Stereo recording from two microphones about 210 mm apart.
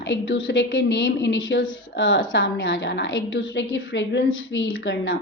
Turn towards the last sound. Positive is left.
turn(degrees=65)  # may be behind; listen again after turning